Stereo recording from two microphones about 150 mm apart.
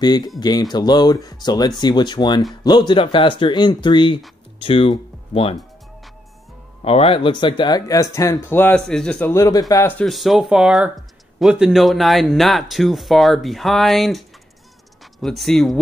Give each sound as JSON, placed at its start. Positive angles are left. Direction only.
{"t": 0.4, "sound": "speech", "side_deg": 30}
{"t": 6.8, "sound": "speech", "side_deg": 40}
{"t": 9.3, "sound": "speech", "side_deg": 25}
{"t": 9.9, "sound": "speech", "side_deg": 0}
{"t": 15.2, "sound": "speech", "side_deg": 0}